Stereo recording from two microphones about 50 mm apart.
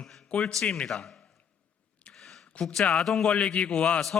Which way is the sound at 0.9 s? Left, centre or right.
Centre.